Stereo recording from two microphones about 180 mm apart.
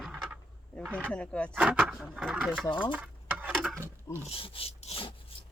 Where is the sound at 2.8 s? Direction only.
5° right (ahead or behind).